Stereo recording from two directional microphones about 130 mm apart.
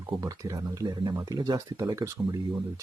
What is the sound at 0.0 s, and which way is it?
Speech, 30° right (ahead or behind).